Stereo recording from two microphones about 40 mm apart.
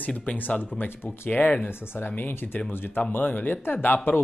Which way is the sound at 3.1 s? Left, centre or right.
Left.